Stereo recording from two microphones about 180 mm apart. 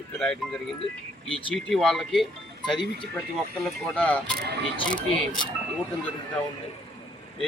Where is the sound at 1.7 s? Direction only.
Centre (ahead or behind).